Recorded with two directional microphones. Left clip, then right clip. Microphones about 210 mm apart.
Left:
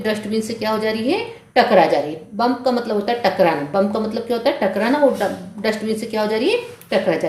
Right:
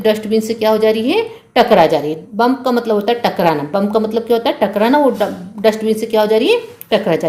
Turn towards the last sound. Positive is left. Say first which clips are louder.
# right 4 dB
turn(degrees=-40)  # may be behind; listen again after turning